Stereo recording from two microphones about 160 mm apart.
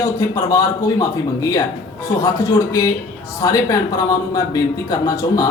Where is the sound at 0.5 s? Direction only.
25° left (ahead or behind).